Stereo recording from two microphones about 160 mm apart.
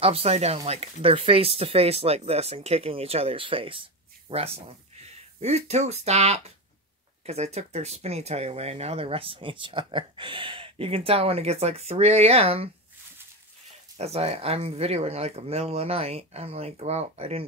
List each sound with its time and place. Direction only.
0.0 s speech: 40° right (ahead or behind)
13.9 s speech: 40° right (ahead or behind)